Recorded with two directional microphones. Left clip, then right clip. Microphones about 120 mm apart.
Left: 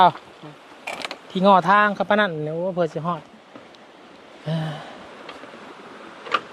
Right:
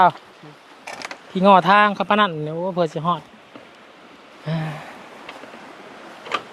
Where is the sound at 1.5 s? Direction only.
30° right (ahead or behind).